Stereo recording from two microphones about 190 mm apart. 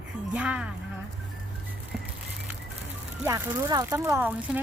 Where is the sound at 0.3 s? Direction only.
5° right (ahead or behind).